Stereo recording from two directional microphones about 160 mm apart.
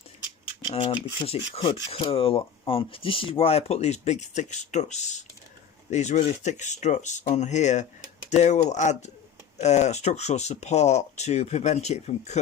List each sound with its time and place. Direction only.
0.7 s speech: 40° left (ahead or behind)